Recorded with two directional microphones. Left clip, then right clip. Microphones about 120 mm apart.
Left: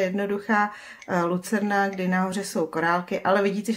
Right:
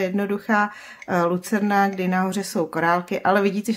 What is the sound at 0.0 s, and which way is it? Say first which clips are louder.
Speech: right 1 dB; 35° right (ahead or behind).